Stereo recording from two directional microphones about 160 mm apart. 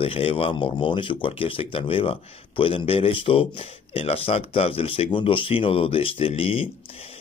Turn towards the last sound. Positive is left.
turn(degrees=35)  # may be behind; listen again after turning